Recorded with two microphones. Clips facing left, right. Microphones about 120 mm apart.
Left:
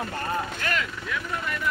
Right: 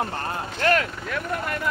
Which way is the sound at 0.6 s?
50° right (ahead or behind).